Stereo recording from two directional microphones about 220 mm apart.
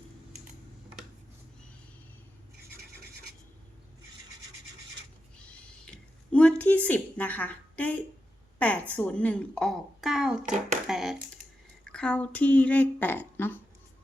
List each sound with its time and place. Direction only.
5.4 s a sound: 5° left (ahead or behind)
8.5 s a woman's voice: 5° left (ahead or behind)
10.4 s speech: 35° right (ahead or behind)
10.8 s speech: centre (ahead or behind)